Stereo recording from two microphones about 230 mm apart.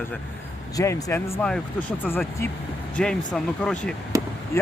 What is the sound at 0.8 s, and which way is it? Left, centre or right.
Speech, centre.